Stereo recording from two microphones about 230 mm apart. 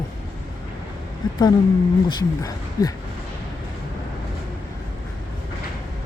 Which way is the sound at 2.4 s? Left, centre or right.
Centre.